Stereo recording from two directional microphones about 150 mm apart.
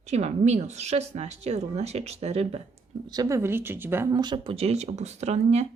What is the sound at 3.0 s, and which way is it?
Speech, 25° right (ahead or behind).